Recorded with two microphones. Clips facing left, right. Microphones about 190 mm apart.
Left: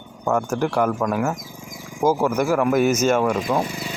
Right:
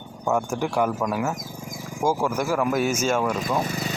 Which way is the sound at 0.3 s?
5° right (ahead or behind).